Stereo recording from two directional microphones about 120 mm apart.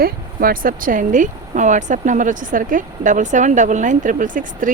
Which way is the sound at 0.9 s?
90° right.